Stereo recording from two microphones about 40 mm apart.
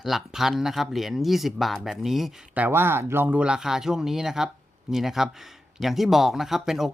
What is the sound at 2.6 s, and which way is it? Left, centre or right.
Speech, right.